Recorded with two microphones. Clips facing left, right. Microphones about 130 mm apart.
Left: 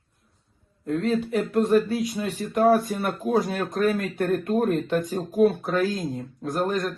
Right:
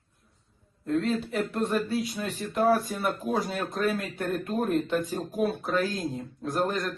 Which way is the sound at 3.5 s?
55° left (ahead or behind).